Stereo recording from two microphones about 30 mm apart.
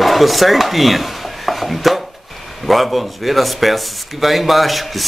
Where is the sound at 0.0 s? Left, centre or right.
Centre.